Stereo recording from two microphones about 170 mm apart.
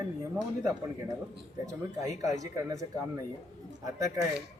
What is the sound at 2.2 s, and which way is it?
Speech, 20° right (ahead or behind).